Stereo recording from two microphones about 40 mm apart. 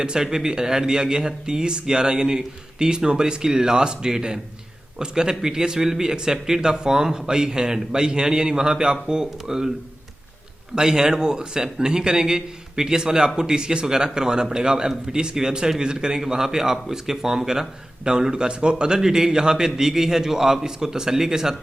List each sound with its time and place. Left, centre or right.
0.0 s a man's voice: centre
10.8 s a man's voice: centre